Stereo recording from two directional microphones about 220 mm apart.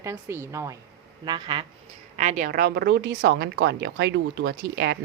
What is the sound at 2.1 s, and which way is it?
Speech, 35° right (ahead or behind).